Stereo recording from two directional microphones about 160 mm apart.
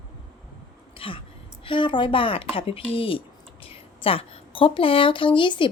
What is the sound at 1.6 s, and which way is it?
Speech, 30° left (ahead or behind).